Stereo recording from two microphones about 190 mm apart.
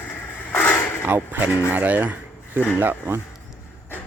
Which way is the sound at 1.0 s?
10° right (ahead or behind).